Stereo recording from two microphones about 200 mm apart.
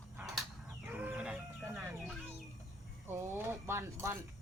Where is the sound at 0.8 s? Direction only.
10° right (ahead or behind).